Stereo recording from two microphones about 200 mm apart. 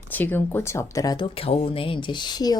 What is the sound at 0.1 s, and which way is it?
Speech, 10° left (ahead or behind).